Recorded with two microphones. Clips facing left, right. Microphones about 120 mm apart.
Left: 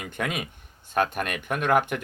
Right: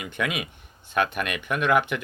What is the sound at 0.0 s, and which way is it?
Speech, 45° left (ahead or behind).